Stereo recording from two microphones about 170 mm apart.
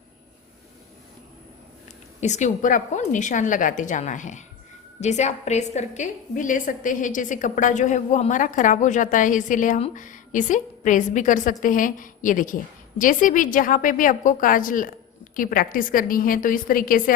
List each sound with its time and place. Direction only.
2.2 s a woman's voice: 45° left (ahead or behind)